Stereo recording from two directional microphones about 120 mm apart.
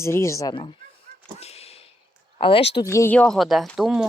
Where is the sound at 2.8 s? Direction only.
25° left (ahead or behind).